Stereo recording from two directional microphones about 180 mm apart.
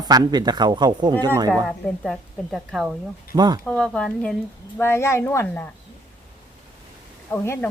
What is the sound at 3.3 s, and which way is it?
Speech, 20° right (ahead or behind).